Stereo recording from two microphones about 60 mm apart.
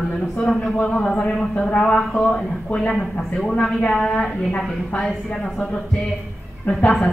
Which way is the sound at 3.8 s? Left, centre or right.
Centre.